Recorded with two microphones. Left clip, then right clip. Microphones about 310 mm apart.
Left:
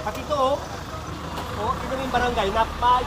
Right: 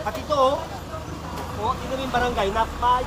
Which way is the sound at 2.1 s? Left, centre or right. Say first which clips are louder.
Even; centre.